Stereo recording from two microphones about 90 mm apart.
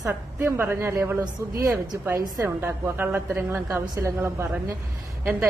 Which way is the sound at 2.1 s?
40° right (ahead or behind).